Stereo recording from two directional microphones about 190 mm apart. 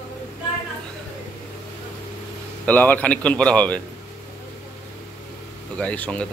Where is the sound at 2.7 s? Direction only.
10° left (ahead or behind).